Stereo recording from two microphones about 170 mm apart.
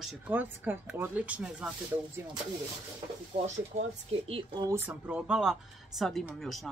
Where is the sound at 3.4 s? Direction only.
35° right (ahead or behind).